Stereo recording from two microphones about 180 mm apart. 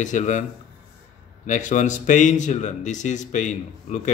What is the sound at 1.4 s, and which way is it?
Speech, 45° left (ahead or behind).